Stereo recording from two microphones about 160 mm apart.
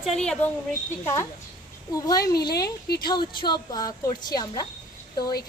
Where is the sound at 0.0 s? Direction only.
5° left (ahead or behind).